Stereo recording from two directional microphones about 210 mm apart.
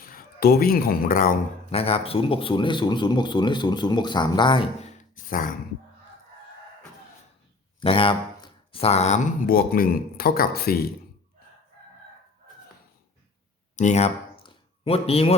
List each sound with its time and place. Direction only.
0.0 s speech: 45° left (ahead or behind)
1.7 s speech: 25° left (ahead or behind)
7.8 s speech: 25° left (ahead or behind); by 10.9 s 45° left (ahead or behind)
13.7 s a sound: 35° left (ahead or behind)